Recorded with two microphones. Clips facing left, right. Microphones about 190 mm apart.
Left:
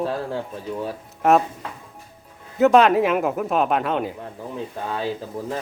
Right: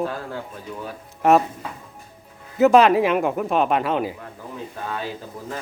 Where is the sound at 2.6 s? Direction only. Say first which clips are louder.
Right 1 dB; centre (ahead or behind).